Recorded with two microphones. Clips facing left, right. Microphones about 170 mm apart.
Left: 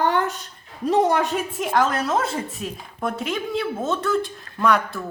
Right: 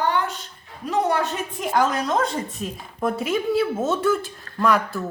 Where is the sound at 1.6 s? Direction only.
Centre (ahead or behind).